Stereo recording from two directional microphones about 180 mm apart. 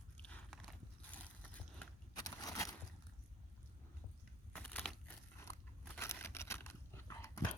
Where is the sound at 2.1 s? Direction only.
20° left (ahead or behind).